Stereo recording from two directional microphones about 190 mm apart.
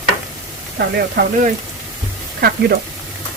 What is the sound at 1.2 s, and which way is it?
Speech, 50° right (ahead or behind).